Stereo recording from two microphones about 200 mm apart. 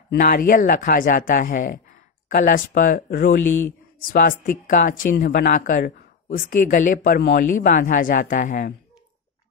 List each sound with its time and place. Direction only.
0.1 s speech: 45° left (ahead or behind)